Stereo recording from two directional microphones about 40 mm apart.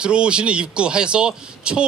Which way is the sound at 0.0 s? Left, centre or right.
Right.